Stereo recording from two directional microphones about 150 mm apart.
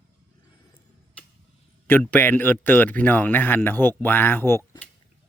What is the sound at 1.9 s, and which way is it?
Speech, 15° left (ahead or behind).